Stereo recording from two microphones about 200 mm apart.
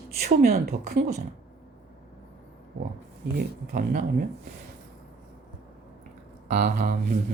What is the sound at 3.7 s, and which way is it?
Speech, 45° right (ahead or behind).